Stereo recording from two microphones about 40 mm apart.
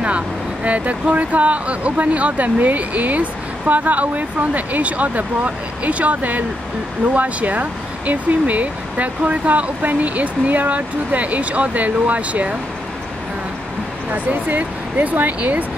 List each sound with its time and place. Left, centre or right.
0.7 s speech: right
14.1 s speech: right